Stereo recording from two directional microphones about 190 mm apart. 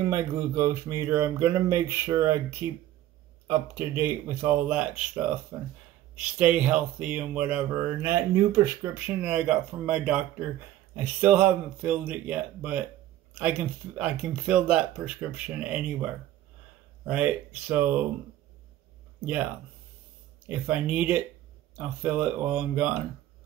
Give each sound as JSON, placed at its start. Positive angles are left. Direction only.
{"t": 0.1, "sound": "speech", "side_deg": -15}
{"t": 20.4, "sound": "speech", "side_deg": -5}